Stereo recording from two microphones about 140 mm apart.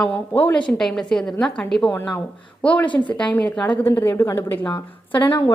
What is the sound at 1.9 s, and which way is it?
A woman's voice, 15° left (ahead or behind).